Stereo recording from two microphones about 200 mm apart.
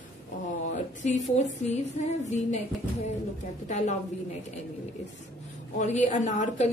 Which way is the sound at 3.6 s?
35° left (ahead or behind).